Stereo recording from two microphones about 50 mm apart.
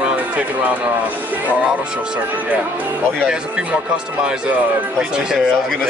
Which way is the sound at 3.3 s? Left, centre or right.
Right.